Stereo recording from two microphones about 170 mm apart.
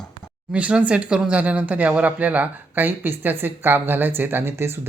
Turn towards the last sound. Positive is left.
turn(degrees=-15)  # may be behind; listen again after turning